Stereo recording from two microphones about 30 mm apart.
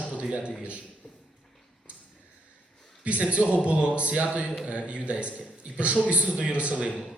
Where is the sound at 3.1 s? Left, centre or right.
Right.